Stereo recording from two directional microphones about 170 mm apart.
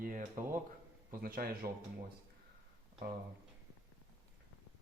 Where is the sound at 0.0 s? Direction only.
55° right (ahead or behind).